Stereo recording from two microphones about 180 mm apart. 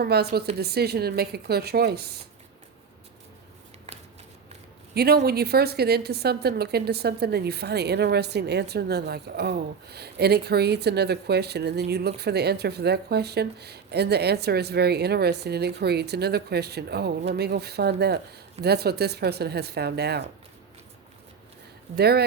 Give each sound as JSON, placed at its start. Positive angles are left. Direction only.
{"t": 0.0, "sound": "a woman's voice", "side_deg": -60}
{"t": 4.9, "sound": "a woman's voice", "side_deg": -60}
{"t": 21.9, "sound": "a woman's voice", "side_deg": -60}